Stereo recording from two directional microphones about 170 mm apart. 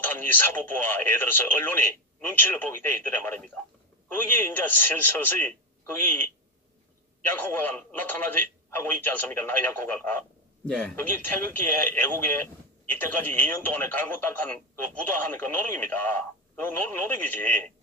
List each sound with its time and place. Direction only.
0.0 s speech: 10° left (ahead or behind)